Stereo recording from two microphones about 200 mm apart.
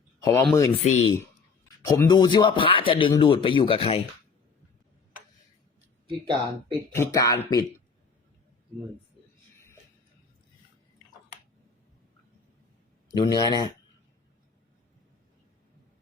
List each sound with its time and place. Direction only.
0.2 s speech: 15° left (ahead or behind)
0.9 s speech: 35° left (ahead or behind)
1.9 s speech: 20° left (ahead or behind)
6.1 s speech: 25° right (ahead or behind)
6.9 s speech: 15° left (ahead or behind)
13.1 s speech: 20° left (ahead or behind)